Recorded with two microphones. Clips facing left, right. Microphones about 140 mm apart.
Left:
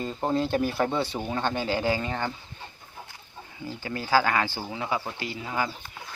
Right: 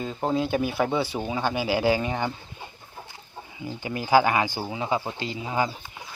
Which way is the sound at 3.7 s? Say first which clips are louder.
Right 4 dB; 15° right (ahead or behind).